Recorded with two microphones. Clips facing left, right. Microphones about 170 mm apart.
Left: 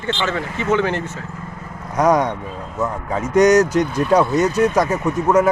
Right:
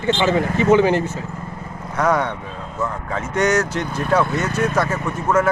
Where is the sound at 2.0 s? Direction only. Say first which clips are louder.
Left 3 dB; 15° left (ahead or behind).